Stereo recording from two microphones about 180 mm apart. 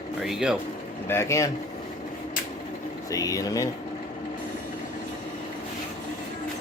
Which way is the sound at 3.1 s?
20° left (ahead or behind).